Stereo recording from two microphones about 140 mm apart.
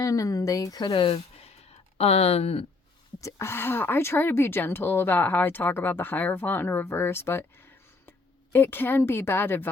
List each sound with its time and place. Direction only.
0.0 s speech: 25° left (ahead or behind); by 2.6 s 45° left (ahead or behind)
3.2 s speech: 20° left (ahead or behind)